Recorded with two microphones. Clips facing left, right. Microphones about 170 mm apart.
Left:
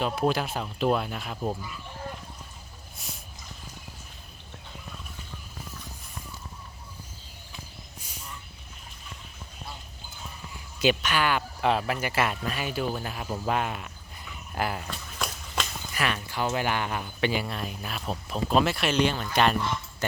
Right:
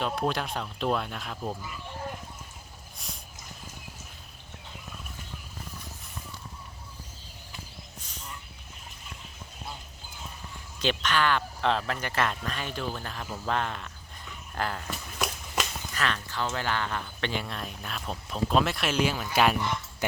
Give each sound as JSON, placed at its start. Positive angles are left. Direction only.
{"t": 0.0, "sound": "speech", "side_deg": 5}
{"t": 8.0, "sound": "fowl", "side_deg": 10}
{"t": 10.8, "sound": "speech", "side_deg": 10}
{"t": 14.8, "sound": "a sound", "side_deg": -5}
{"t": 16.0, "sound": "speech", "side_deg": 10}
{"t": 20.0, "sound": "dog", "side_deg": -15}